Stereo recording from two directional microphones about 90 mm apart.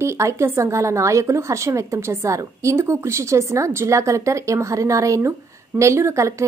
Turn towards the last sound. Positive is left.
turn(degrees=-35)  # may be behind; listen again after turning